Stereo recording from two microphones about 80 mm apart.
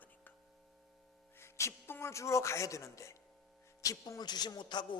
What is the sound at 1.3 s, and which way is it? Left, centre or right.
A man's voice, left.